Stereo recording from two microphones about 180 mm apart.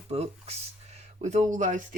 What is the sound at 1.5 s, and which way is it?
Speech, 45° right (ahead or behind).